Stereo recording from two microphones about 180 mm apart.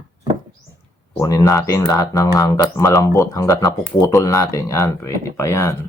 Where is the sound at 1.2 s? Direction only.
20° left (ahead or behind).